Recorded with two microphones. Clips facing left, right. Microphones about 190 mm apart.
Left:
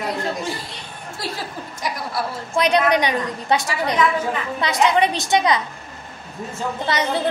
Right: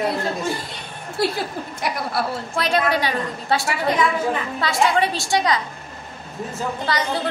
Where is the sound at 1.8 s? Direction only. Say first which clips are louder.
Right 1 dB; 60° right (ahead or behind).